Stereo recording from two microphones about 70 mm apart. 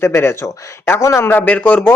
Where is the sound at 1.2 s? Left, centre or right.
Left.